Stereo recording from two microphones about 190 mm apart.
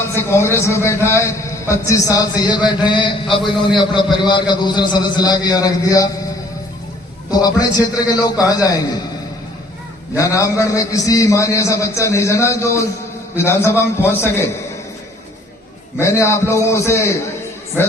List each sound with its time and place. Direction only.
0.2 s a man's voice: 15° left (ahead or behind)
7.3 s a man's voice: 20° left (ahead or behind)
10.2 s a man's voice: 15° left (ahead or behind)
16.0 s a man's voice: 15° left (ahead or behind)